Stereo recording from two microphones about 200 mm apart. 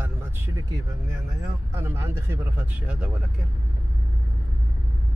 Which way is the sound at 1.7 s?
15° right (ahead or behind).